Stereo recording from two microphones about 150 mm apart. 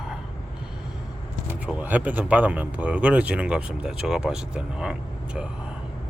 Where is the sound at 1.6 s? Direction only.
10° right (ahead or behind).